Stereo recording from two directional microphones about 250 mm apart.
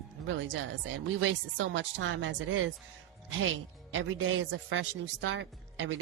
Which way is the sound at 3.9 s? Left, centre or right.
Right.